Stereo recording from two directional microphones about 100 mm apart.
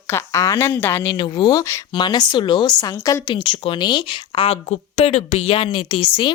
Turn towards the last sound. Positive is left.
turn(degrees=55)  # may be behind; listen again after turning